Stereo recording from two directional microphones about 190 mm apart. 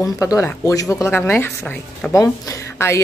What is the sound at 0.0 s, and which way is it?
A woman's voice, 15° left (ahead or behind).